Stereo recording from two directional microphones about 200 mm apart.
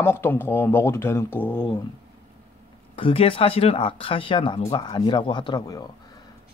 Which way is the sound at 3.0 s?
25° left (ahead or behind).